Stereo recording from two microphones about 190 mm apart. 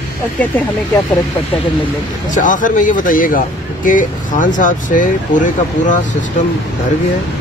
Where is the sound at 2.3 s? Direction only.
45° left (ahead or behind).